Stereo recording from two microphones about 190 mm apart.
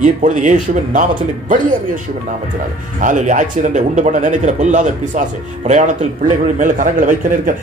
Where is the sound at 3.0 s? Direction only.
40° right (ahead or behind).